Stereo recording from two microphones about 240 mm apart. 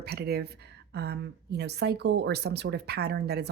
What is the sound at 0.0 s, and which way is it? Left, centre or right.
Speech, right.